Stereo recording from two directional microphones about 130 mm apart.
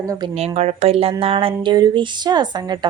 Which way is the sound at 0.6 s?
55° right (ahead or behind).